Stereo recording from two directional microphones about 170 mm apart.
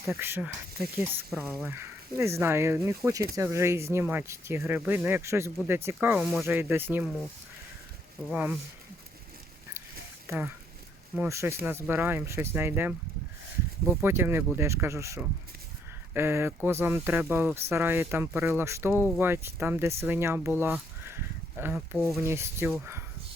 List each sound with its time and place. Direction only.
0.1 s speech: 15° right (ahead or behind)
8.3 s speech: 10° right (ahead or behind)
10.2 s speech: 10° right (ahead or behind)
21.9 s speech: centre (ahead or behind)
22.2 s speech: 15° right (ahead or behind)